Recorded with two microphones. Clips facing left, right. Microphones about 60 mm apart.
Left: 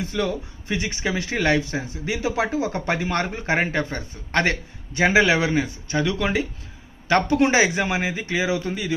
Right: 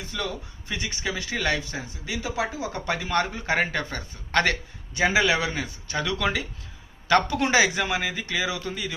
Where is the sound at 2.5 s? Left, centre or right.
Left.